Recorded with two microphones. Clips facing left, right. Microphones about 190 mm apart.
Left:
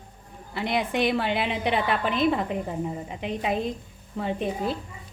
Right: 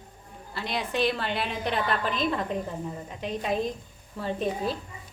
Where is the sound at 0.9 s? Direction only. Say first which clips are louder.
Even; 15° left (ahead or behind).